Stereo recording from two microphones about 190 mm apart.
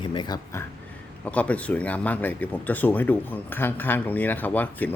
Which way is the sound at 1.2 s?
5° left (ahead or behind).